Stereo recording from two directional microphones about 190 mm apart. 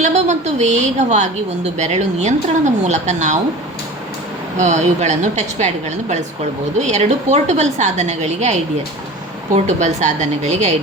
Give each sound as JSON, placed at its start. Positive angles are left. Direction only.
{"t": 0.0, "sound": "a woman's voice", "side_deg": -35}
{"t": 4.5, "sound": "a woman's voice", "side_deg": -40}
{"t": 9.6, "sound": "a woman's voice", "side_deg": -35}